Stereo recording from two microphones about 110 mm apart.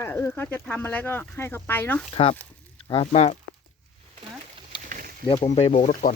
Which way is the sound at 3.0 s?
85° left.